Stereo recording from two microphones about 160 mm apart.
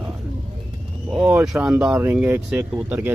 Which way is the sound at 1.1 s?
5° right (ahead or behind).